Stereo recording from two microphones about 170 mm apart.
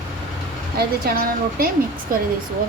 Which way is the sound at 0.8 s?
65° right (ahead or behind).